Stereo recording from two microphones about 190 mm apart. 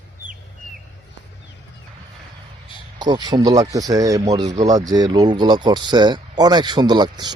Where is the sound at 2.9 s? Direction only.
20° right (ahead or behind).